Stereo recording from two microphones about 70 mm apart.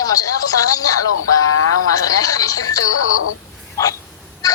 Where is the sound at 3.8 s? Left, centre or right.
Left.